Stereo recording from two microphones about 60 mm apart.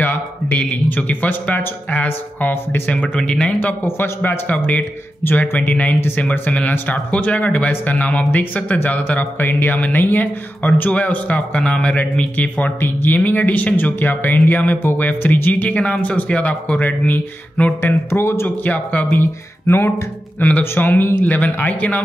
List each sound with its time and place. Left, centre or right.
0.5 s speech: left
3.2 s speech: centre
3.8 s speech: left
4.5 s speech: left
5.9 s speech: left
6.9 s speech: left
18.1 s speech: left
18.6 s speech: left
19.6 s speech: left
20.3 s speech: left